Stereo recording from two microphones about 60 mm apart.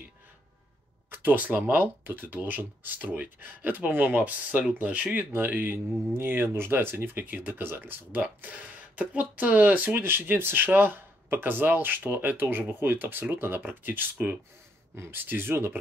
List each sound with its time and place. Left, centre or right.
1.1 s speech: right
5.5 s speech: right